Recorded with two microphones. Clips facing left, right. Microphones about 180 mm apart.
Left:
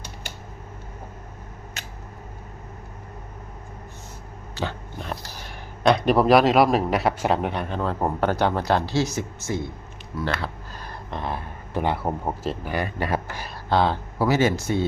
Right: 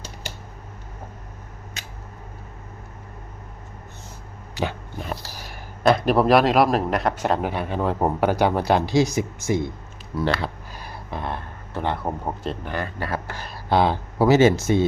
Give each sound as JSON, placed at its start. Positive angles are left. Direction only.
{"t": 4.5, "sound": "speech", "side_deg": -10}
{"t": 7.8, "sound": "speech", "side_deg": -15}
{"t": 10.2, "sound": "a sound", "side_deg": -15}
{"t": 11.7, "sound": "speech", "side_deg": 10}
{"t": 13.7, "sound": "speech", "side_deg": -15}
{"t": 14.2, "sound": "speech", "side_deg": -25}